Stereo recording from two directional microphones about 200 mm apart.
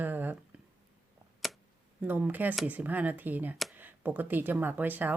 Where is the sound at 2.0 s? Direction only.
10° right (ahead or behind).